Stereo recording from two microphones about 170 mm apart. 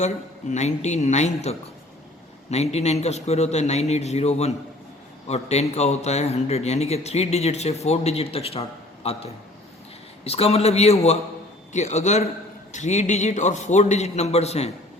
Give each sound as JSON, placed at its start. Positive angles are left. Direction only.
{"t": 0.0, "sound": "a man's voice", "side_deg": 45}
{"t": 10.2, "sound": "a man's voice", "side_deg": 35}